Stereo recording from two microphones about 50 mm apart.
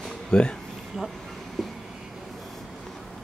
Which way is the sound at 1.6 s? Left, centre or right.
Centre.